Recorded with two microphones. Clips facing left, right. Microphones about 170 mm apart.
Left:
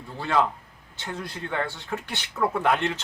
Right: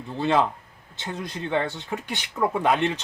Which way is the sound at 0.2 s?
20° right (ahead or behind).